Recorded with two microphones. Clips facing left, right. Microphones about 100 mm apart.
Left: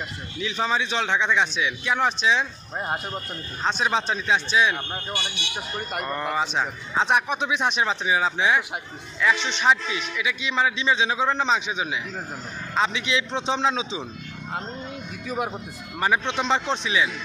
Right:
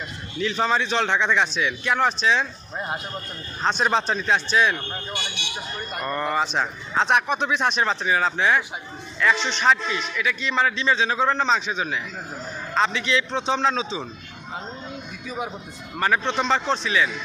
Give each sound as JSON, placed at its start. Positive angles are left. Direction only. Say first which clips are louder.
{"t": 0.5, "sound": "a man's voice", "louder": "right 2 dB", "side_deg": 5}
{"t": 16.0, "sound": "a man's voice", "louder": "right 1 dB", "side_deg": 15}